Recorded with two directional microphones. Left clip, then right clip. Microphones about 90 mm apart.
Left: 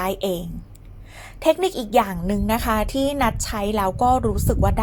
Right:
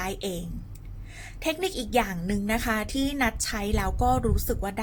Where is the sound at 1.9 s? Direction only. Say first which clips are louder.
Left 6 dB; 25° left (ahead or behind).